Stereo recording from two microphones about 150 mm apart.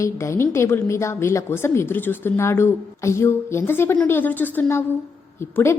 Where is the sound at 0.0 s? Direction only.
20° left (ahead or behind).